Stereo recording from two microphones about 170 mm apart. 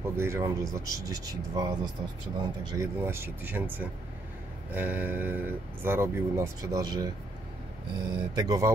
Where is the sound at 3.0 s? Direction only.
15° right (ahead or behind).